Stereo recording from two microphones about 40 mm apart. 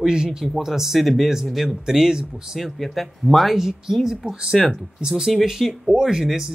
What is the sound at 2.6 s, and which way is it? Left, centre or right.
Speech, centre.